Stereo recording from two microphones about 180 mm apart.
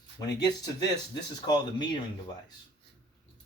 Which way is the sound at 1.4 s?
20° left (ahead or behind).